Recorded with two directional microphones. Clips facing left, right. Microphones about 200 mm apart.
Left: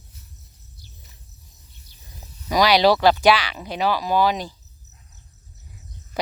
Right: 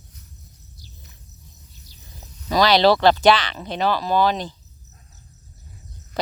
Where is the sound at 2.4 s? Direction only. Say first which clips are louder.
Right 1 dB; 10° left (ahead or behind).